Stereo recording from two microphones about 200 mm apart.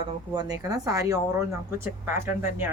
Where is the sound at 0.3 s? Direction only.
20° right (ahead or behind).